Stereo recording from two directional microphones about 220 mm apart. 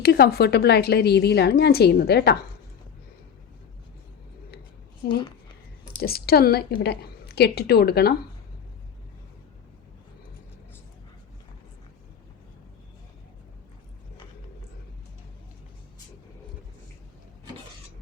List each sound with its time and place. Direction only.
0.0 s a woman's voice: 45° left (ahead or behind)
6.0 s a woman's voice: 45° left (ahead or behind)